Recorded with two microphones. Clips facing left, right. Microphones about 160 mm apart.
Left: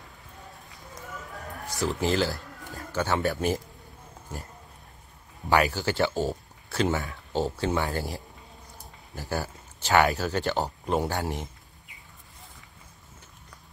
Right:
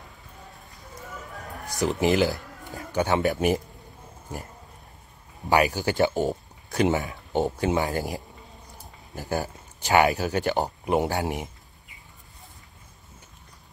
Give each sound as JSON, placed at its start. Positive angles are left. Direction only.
{"t": 1.7, "sound": "speech", "side_deg": -15}
{"t": 5.5, "sound": "speech", "side_deg": -15}